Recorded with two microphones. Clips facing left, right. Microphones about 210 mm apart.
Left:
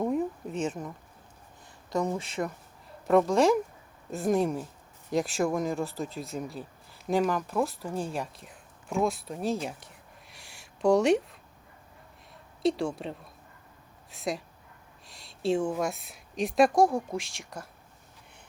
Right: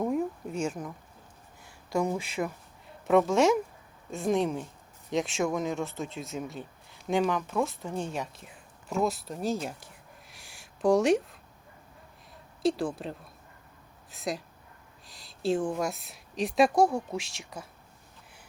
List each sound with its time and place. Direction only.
0.0 s a sound: centre (ahead or behind)
2.0 s a woman's voice: 10° right (ahead or behind)
12.6 s a woman's voice: centre (ahead or behind)